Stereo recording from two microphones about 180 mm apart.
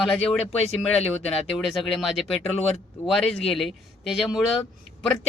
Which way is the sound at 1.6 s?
Centre (ahead or behind).